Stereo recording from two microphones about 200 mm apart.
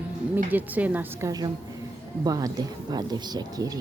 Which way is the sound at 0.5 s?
10° right (ahead or behind).